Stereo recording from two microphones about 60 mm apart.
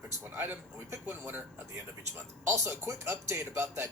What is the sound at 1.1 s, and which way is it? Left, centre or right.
Speech, right.